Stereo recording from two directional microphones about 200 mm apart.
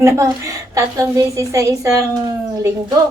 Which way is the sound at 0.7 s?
15° right (ahead or behind).